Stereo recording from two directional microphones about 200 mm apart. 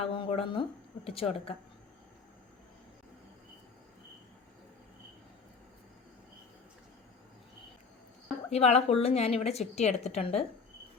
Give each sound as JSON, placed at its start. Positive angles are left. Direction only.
{"t": 0.0, "sound": "a woman's voice", "side_deg": 25}
{"t": 8.4, "sound": "a woman's voice", "side_deg": 30}